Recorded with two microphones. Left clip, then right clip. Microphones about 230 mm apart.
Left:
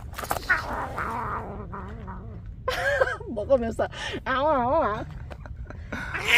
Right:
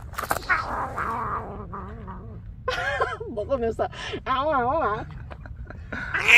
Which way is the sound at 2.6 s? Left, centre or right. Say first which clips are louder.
Left 2 dB; left.